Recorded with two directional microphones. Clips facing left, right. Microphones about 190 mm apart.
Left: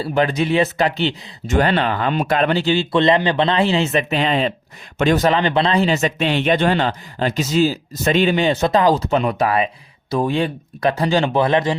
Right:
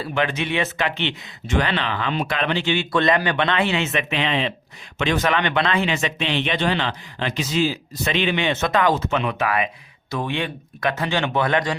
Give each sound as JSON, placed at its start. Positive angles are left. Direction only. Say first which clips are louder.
{"t": 0.0, "sound": "speech", "louder": "left 5 dB", "side_deg": 35}
{"t": 2.9, "sound": "speech", "louder": "left 4 dB", "side_deg": 25}